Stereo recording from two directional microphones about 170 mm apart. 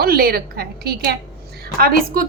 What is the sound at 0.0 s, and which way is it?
A woman's voice, 65° right (ahead or behind).